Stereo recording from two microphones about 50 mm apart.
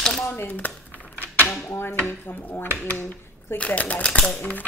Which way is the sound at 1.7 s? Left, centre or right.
Left.